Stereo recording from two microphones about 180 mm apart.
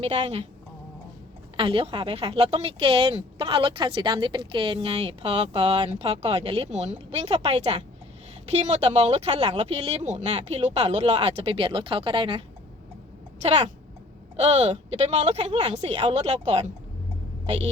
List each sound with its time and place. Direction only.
0.0 s a woman's voice: 35° right (ahead or behind)
1.5 s a woman's voice: 30° right (ahead or behind)